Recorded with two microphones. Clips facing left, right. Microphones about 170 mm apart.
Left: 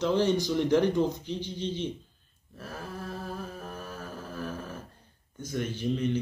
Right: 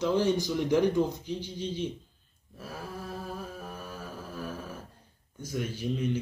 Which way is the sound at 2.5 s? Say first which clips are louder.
Even; 10° right (ahead or behind).